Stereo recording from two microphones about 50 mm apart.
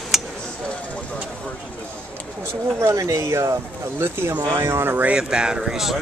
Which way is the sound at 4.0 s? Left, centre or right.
Right.